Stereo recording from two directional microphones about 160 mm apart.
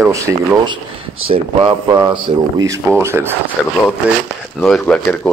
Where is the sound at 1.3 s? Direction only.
35° right (ahead or behind).